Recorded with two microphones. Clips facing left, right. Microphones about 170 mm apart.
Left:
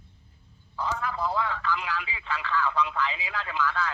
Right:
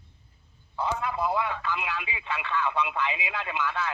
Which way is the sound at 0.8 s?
20° right (ahead or behind).